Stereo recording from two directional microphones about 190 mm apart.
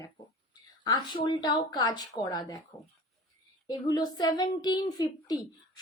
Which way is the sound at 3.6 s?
20° left (ahead or behind).